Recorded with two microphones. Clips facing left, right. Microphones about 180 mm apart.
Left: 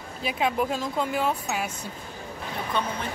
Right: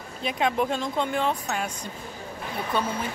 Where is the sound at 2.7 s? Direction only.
5° right (ahead or behind).